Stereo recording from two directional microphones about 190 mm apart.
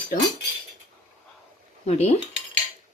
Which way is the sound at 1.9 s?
35° left (ahead or behind).